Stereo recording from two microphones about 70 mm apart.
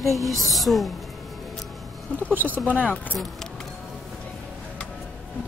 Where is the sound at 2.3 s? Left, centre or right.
Right.